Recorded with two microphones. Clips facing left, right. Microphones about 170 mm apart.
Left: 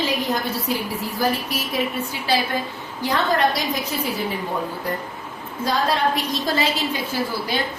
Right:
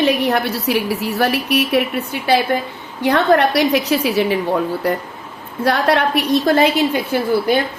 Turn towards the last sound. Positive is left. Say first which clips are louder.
# right 9 dB
turn(degrees=-60)  # may be behind; listen again after turning